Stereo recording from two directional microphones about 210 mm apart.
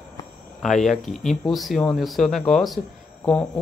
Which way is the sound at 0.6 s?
Centre (ahead or behind).